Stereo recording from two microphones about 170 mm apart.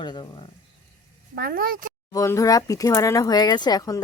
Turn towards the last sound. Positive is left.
turn(degrees=20)  # may be behind; listen again after turning